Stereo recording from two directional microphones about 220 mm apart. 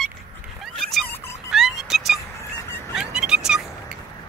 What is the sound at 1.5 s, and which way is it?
Music, centre (ahead or behind).